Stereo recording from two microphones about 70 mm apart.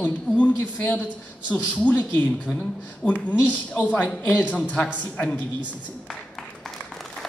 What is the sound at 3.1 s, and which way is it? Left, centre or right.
Speech, left.